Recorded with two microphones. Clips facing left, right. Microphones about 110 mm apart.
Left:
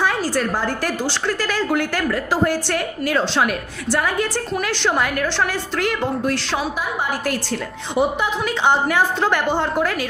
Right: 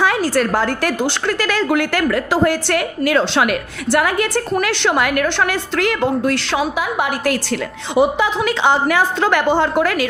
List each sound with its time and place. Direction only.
0.0 s a woman's voice: 80° right